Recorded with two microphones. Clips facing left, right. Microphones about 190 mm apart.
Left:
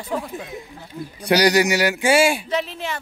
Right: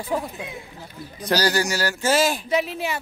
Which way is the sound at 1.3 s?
15° left (ahead or behind).